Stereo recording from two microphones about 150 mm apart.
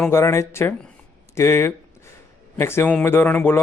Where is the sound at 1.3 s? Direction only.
15° left (ahead or behind).